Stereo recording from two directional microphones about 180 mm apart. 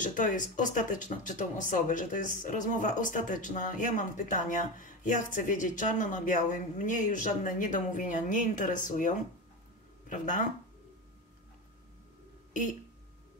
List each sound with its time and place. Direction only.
0.0 s speech: 45° left (ahead or behind)